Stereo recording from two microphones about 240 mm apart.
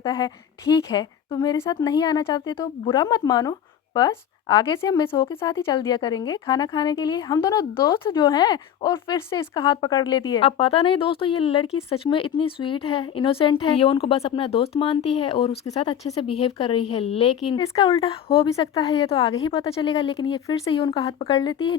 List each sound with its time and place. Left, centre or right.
0.0 s speech: centre